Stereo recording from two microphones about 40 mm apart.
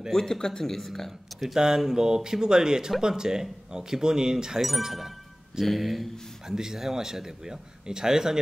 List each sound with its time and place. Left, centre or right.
0.1 s speech: centre
1.5 s speech: centre
6.4 s speech: centre